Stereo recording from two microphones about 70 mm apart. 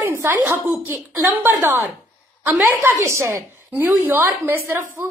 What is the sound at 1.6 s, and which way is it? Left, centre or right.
Speech, right.